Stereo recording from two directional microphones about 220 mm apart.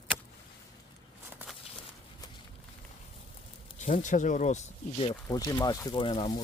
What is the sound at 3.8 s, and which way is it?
Speech, 35° left (ahead or behind).